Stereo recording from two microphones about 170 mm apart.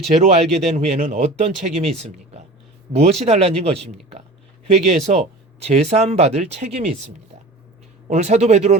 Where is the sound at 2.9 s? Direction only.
35° right (ahead or behind).